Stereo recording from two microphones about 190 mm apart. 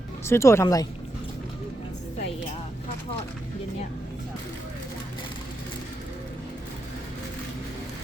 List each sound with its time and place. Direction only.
0.3 s speech: 15° left (ahead or behind)